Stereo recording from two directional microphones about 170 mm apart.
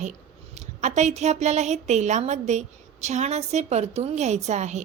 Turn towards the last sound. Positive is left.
turn(degrees=-45)  # may be behind; listen again after turning